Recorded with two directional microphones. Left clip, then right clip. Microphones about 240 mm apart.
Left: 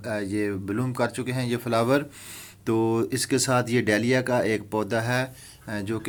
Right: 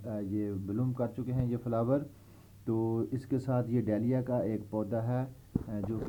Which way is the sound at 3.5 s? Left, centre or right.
Centre.